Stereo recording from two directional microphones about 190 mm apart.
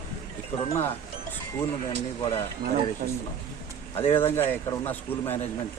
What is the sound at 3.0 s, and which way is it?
Speech, 50° right (ahead or behind).